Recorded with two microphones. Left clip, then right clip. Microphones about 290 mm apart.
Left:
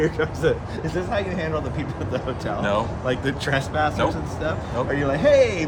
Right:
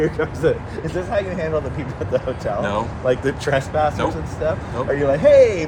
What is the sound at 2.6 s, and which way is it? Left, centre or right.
Speech, centre.